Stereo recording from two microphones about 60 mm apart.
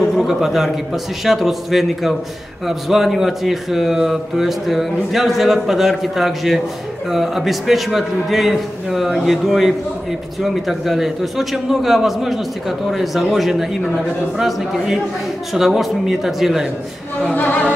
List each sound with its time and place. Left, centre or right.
0.0 s a man's voice: centre
17.2 s a capella: left